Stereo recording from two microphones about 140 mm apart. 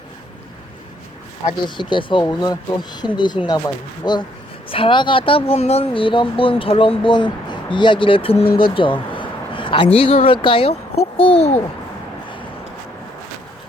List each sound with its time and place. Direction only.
1.6 s a child's voice: 35° left (ahead or behind); by 11.6 s 50° left (ahead or behind)